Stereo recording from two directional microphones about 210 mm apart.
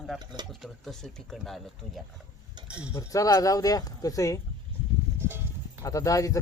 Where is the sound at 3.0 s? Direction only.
15° left (ahead or behind).